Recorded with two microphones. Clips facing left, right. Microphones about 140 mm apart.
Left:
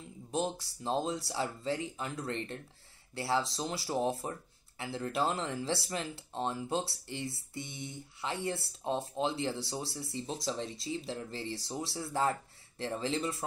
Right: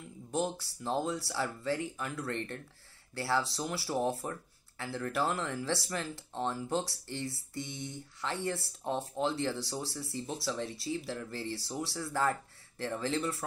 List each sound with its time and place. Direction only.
0.3 s speech: 20° left (ahead or behind)